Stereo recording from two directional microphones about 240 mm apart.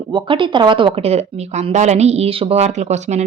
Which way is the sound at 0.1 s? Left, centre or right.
Centre.